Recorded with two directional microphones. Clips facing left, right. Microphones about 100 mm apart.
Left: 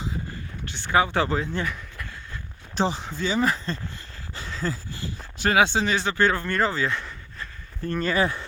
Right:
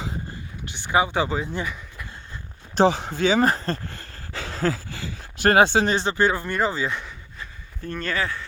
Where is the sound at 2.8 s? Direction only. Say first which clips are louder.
Right 7 dB; 60° right (ahead or behind).